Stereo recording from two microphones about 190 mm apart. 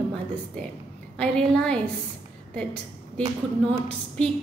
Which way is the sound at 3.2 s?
30° right (ahead or behind).